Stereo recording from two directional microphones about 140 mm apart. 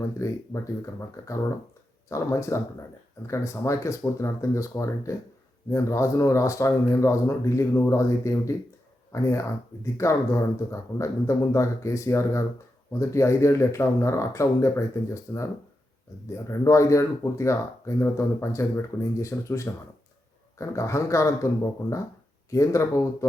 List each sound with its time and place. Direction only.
0.2 s speech: 20° left (ahead or behind)